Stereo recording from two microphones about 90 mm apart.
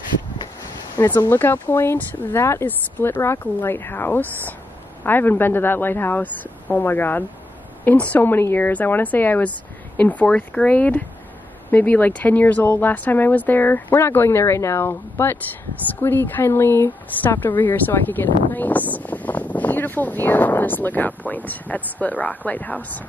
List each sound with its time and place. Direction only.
0.9 s speech: 50° left (ahead or behind)
1.2 s speech: 20° left (ahead or behind)